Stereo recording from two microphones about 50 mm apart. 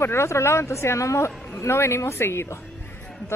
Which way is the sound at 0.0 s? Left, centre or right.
Left.